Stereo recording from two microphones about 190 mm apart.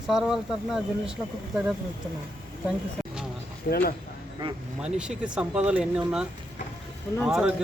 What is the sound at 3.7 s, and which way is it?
Speech, 45° left (ahead or behind).